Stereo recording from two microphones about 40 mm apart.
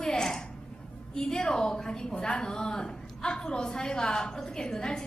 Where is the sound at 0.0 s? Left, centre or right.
Centre.